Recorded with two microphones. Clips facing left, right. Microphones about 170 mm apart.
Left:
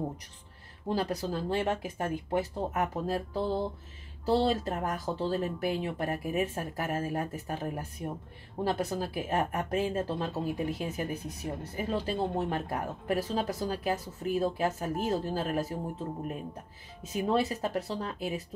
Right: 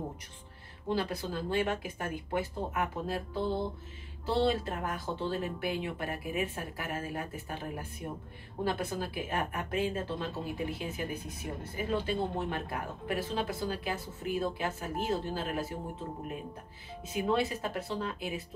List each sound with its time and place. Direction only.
0.8 s speech: 40° left (ahead or behind)
17.1 s speech: 40° left (ahead or behind)